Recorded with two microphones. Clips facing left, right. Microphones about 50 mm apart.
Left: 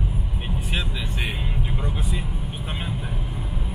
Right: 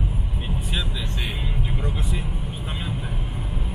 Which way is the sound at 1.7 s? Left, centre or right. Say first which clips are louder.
Right 1 dB; centre.